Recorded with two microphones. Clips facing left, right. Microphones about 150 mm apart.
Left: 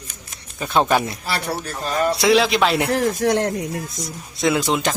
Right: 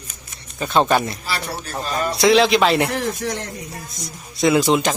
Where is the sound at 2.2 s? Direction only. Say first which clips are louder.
Right 4 dB; 5° left (ahead or behind).